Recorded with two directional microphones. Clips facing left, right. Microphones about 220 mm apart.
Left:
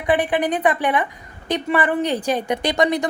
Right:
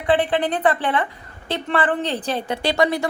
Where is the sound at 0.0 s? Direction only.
15° left (ahead or behind).